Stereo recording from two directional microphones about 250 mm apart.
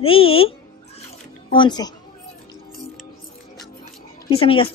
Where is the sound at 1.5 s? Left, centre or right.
Centre.